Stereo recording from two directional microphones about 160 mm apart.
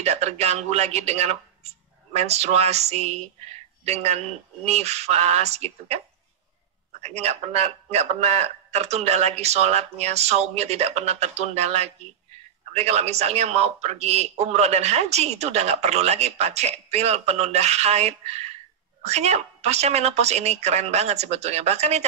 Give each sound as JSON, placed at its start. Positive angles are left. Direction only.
{"t": 0.0, "sound": "speech", "side_deg": -40}
{"t": 7.0, "sound": "speech", "side_deg": -40}